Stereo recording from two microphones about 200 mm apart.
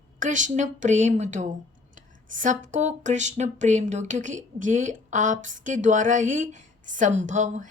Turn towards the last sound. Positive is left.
turn(degrees=-40)  # may be behind; listen again after turning